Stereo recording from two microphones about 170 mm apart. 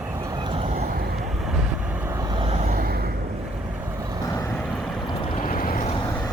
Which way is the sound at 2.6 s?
50° right (ahead or behind).